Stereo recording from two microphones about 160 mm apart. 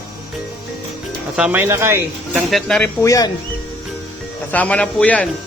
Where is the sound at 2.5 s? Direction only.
5° left (ahead or behind).